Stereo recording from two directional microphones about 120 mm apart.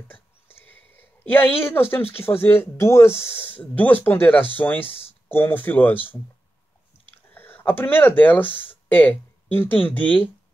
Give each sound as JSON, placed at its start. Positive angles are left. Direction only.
{"t": 0.1, "sound": "a sound", "side_deg": 15}
{"t": 2.4, "sound": "speech", "side_deg": 20}
{"t": 7.3, "sound": "a sound", "side_deg": 15}
{"t": 8.2, "sound": "speech", "side_deg": 15}
{"t": 8.5, "sound": "speech", "side_deg": 45}
{"t": 8.8, "sound": "speech", "side_deg": 15}